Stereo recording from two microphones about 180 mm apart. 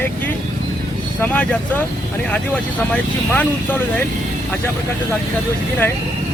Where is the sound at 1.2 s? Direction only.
10° left (ahead or behind).